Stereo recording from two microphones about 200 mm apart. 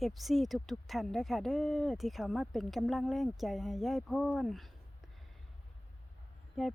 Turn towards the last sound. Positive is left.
turn(degrees=0)  # may be behind; listen again after turning